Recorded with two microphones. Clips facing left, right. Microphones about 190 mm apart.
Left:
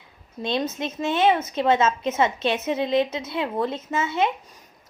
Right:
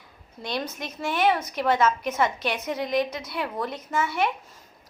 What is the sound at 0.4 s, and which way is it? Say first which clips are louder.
A woman's voice: left 5 dB; 25° left (ahead or behind).